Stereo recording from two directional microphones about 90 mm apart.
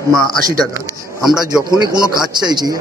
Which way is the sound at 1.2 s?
5° right (ahead or behind).